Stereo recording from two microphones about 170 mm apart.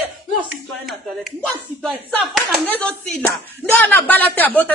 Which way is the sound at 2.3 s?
5° left (ahead or behind).